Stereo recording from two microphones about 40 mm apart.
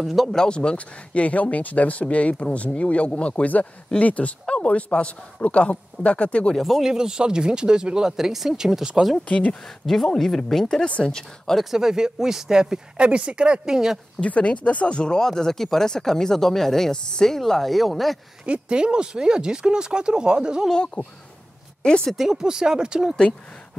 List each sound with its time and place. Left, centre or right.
0.0 s speech: centre
0.5 s a man's voice: left
6.5 s speech: centre
6.9 s speech: centre
9.2 s speech: left
9.7 s speech: centre
11.7 s speech: centre
14.2 s speech: left
15.0 s a man's voice: left
16.9 s a man's voice: left
17.3 s speech: centre
18.4 s speech: right
20.7 s a man's voice: left
22.1 s speech: centre